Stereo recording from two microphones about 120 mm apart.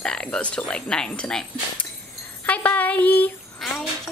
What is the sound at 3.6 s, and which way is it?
Speech, centre (ahead or behind).